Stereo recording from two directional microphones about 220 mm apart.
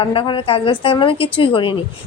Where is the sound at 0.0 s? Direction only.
25° left (ahead or behind).